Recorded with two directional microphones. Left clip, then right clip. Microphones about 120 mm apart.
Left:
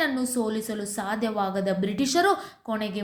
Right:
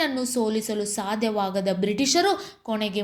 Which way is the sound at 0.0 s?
20° right (ahead or behind).